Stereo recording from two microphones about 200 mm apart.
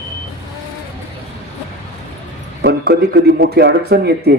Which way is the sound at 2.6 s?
55° right (ahead or behind).